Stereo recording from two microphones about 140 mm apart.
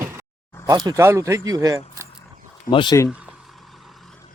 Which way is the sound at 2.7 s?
35° left (ahead or behind).